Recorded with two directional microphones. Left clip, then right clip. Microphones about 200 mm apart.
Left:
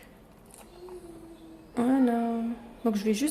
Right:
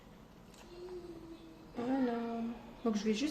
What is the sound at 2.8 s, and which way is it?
Speech, 20° left (ahead or behind).